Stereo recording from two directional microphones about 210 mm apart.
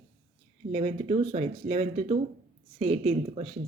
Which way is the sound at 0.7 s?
30° right (ahead or behind).